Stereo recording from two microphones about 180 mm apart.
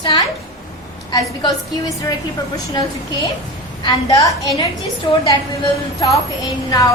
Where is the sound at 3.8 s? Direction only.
20° left (ahead or behind).